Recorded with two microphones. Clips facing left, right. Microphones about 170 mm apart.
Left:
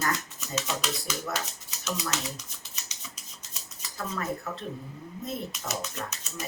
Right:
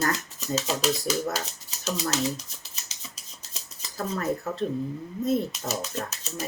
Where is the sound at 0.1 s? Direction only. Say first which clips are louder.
Right 4 dB; 30° right (ahead or behind).